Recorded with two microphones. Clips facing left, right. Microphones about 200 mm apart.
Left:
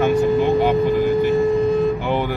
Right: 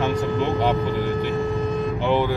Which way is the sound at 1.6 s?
15° left (ahead or behind).